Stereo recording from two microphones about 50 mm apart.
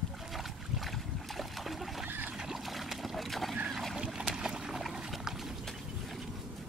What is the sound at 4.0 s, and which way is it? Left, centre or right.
Boat, centre.